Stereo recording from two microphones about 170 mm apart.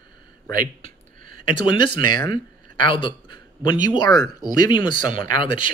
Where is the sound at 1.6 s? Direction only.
30° left (ahead or behind).